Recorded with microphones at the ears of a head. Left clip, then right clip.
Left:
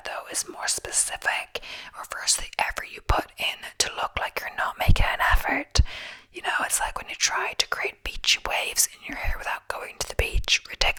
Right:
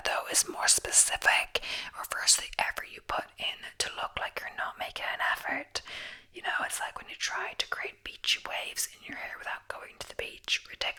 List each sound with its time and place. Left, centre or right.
0.2 s speech: centre
2.7 s whispering: left
6.3 s speech: left